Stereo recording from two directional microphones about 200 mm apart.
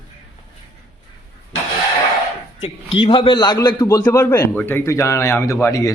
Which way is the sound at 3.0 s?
25° left (ahead or behind).